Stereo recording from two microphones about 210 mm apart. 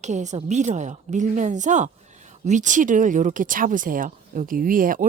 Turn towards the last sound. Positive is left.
turn(degrees=-40)  # may be behind; listen again after turning